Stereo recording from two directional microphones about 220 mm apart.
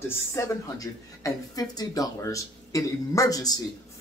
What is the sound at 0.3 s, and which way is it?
Speech, 15° left (ahead or behind).